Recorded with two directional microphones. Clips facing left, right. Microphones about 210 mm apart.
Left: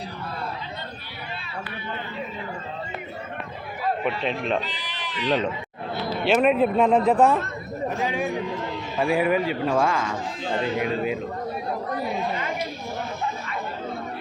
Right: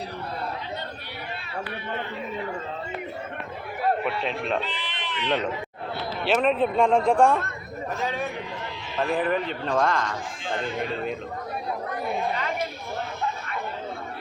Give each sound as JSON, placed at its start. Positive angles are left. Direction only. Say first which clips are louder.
{"t": 4.0, "sound": "speech", "louder": "left 2 dB", "side_deg": 0}
{"t": 4.6, "sound": "bleat", "louder": "right 1 dB", "side_deg": 40}
{"t": 6.2, "sound": "speech", "louder": "left 3 dB", "side_deg": 5}